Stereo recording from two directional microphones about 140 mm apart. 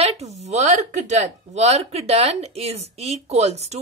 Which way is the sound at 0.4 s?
55° right (ahead or behind).